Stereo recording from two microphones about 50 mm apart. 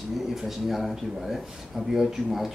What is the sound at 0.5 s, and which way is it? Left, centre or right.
A man's voice, centre.